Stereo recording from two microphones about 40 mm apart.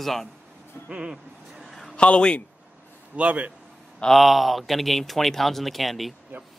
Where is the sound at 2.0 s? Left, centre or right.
Left.